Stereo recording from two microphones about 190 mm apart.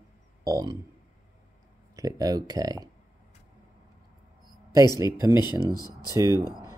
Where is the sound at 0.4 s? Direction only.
20° right (ahead or behind).